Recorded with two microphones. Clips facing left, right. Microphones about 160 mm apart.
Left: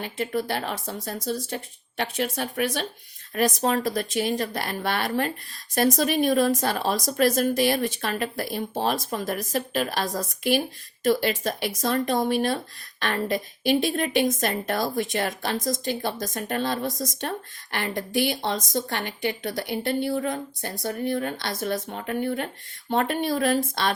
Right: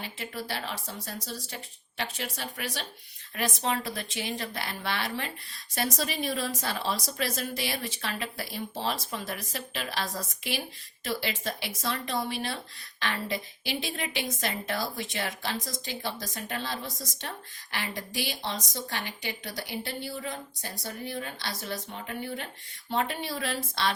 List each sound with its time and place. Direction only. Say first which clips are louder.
0.0 s a woman's voice: left 10 dB; 50° left (ahead or behind)